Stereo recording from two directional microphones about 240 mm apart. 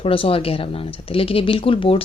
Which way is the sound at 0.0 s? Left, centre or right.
Left.